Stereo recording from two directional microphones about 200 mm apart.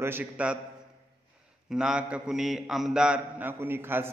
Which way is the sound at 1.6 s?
5° right (ahead or behind).